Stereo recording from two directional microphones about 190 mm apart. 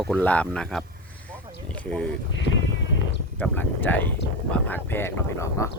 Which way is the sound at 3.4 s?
10° left (ahead or behind).